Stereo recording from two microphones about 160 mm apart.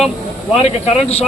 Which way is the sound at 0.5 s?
40° left (ahead or behind).